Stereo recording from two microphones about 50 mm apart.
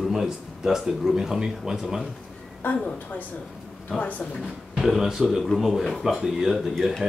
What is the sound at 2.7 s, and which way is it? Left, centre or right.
Speech, left.